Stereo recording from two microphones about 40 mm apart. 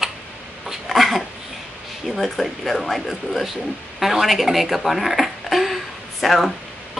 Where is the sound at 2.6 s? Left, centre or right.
Centre.